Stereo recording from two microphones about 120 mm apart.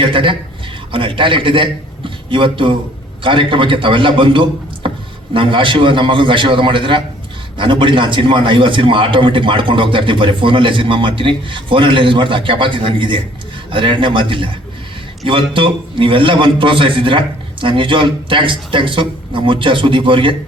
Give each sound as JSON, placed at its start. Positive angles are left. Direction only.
{"t": 0.0, "sound": "a man's voice", "side_deg": -45}